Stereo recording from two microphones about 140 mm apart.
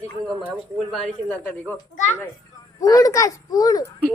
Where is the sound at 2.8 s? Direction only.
25° left (ahead or behind).